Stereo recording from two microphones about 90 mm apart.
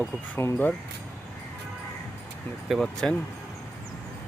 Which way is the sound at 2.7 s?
5° left (ahead or behind).